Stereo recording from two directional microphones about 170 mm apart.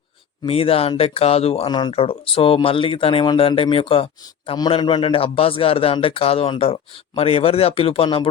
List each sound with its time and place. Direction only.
0.4 s speech: 35° left (ahead or behind)